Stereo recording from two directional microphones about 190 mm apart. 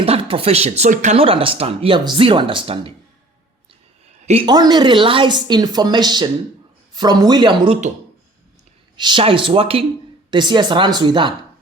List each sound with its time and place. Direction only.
0.0 s speech: 30° right (ahead or behind)
4.3 s speech: 25° right (ahead or behind)
9.0 s speech: 25° right (ahead or behind)